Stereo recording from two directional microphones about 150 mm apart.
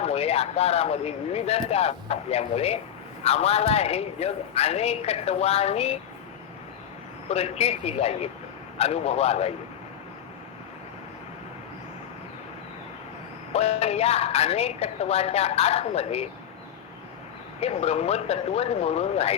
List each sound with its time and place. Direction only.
0.0 s speech: 45° left (ahead or behind)
7.3 s speech: 45° left (ahead or behind)
13.5 s speech: 45° left (ahead or behind)
17.6 s speech: 45° left (ahead or behind)